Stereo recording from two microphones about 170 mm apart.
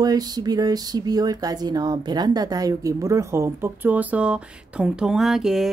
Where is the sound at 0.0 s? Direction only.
25° right (ahead or behind).